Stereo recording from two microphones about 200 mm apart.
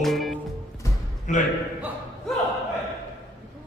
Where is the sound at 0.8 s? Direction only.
15° left (ahead or behind).